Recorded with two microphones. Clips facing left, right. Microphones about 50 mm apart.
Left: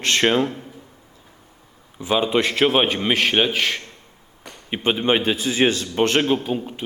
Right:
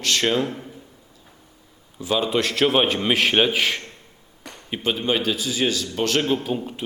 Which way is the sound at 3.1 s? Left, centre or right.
Centre.